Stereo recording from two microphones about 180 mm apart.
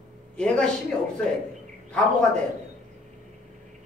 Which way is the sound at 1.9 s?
5° left (ahead or behind).